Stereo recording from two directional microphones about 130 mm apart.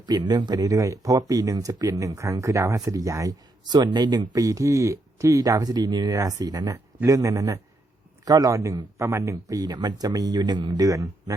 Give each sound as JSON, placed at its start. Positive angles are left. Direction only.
{"t": 0.0, "sound": "speech", "side_deg": -35}